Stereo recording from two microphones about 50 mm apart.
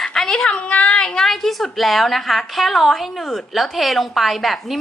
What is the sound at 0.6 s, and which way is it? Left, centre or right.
A woman's voice, left.